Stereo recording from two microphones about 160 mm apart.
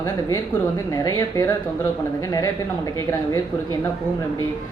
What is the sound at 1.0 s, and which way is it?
Speech, 20° left (ahead or behind).